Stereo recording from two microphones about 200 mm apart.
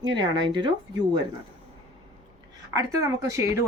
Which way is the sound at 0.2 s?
25° right (ahead or behind).